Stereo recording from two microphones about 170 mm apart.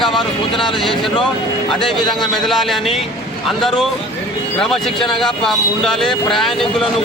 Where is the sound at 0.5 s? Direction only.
30° left (ahead or behind).